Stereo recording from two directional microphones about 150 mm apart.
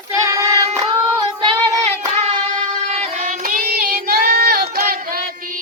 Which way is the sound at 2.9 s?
50° right (ahead or behind).